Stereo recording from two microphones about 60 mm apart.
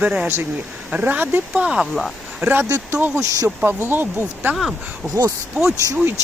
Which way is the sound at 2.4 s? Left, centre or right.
Right.